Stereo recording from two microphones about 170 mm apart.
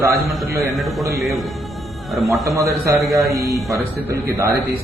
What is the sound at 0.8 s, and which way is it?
A man's voice, centre (ahead or behind).